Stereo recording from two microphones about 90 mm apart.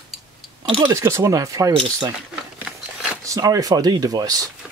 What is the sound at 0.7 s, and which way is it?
Speech, 65° right (ahead or behind).